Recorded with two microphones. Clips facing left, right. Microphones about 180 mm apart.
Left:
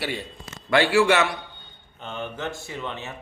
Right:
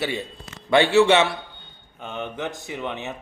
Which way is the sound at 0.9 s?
25° right (ahead or behind).